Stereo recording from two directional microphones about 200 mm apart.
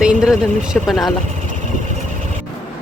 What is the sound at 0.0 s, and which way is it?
Speech, 5° right (ahead or behind).